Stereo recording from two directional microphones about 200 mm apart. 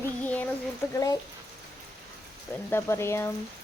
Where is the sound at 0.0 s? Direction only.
10° left (ahead or behind).